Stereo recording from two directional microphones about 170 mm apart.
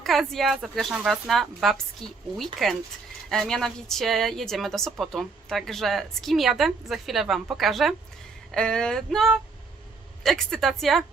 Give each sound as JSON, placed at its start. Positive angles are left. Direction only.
{"t": 0.0, "sound": "a woman's voice", "side_deg": 0}